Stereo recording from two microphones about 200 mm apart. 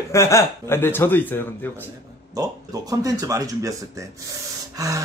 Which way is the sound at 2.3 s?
20° right (ahead or behind).